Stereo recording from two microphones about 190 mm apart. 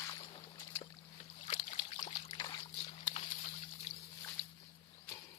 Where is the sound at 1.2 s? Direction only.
35° left (ahead or behind).